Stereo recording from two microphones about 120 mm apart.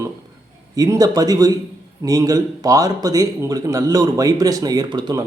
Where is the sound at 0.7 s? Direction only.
30° right (ahead or behind).